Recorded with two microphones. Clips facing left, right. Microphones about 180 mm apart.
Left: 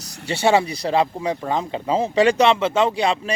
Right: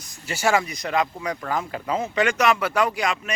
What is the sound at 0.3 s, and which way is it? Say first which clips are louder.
Speech: left 4 dB; 30° left (ahead or behind).